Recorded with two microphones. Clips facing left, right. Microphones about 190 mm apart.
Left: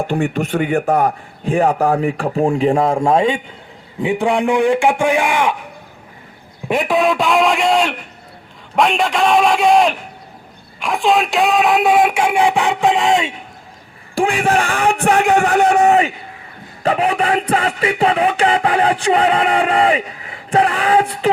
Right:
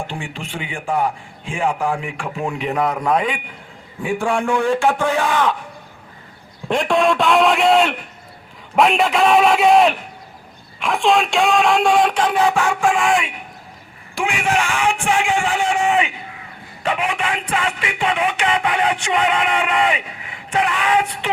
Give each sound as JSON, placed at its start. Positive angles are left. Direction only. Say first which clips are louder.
{"t": 0.0, "sound": "a man's voice", "louder": "left 10 dB", "side_deg": 55}
{"t": 0.9, "sound": "music", "louder": "left 5 dB", "side_deg": 40}
{"t": 4.0, "sound": "speech", "louder": "left 4 dB", "side_deg": 20}
{"t": 6.7, "sound": "a man's voice", "louder": "left 1 dB", "side_deg": 5}
{"t": 14.2, "sound": "music", "louder": "left 5 dB", "side_deg": 35}
{"t": 15.1, "sound": "a man's voice", "louder": "left 6 dB", "side_deg": 40}
{"t": 15.5, "sound": "a man's voice", "louder": "left 7 dB", "side_deg": 60}
{"t": 15.8, "sound": "a sound", "louder": "left 6 dB", "side_deg": 40}
{"t": 16.8, "sound": "music", "louder": "left 6 dB", "side_deg": 35}